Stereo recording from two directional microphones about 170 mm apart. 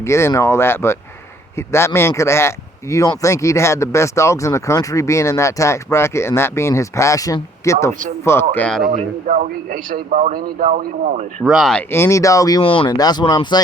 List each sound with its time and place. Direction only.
0.0 s speech: 15° left (ahead or behind)
8.9 s a man's voice: 50° right (ahead or behind)
11.4 s speech: centre (ahead or behind); by 13.6 s 25° left (ahead or behind)